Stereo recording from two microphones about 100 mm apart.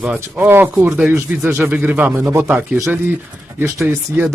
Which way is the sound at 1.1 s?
25° right (ahead or behind).